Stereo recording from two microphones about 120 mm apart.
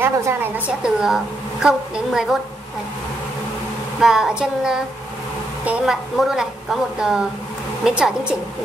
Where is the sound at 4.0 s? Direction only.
5° right (ahead or behind).